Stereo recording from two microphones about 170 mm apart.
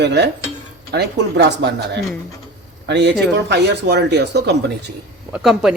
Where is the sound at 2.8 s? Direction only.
90° right.